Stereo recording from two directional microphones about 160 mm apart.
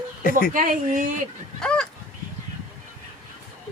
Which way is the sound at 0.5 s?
55° right (ahead or behind).